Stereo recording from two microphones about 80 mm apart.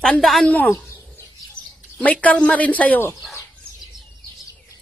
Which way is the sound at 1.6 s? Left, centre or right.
Left.